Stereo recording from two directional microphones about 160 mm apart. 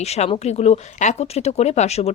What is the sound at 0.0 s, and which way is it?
Speech, 40° left (ahead or behind).